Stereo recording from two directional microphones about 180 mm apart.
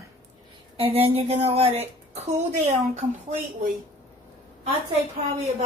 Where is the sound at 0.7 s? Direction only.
30° right (ahead or behind).